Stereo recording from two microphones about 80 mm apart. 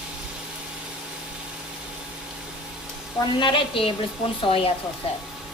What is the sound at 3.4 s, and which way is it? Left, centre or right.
Speech, left.